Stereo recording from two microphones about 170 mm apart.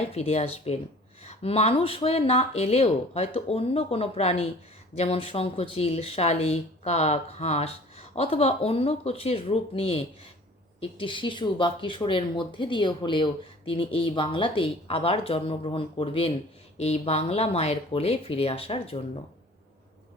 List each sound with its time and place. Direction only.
0.1 s speech: 35° left (ahead or behind)